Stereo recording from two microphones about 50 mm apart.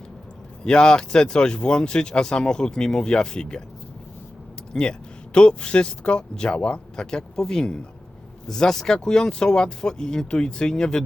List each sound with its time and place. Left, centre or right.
0.6 s speech: centre
4.7 s speech: centre